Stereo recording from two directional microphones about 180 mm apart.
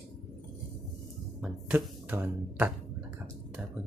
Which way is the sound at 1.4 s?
5° right (ahead or behind).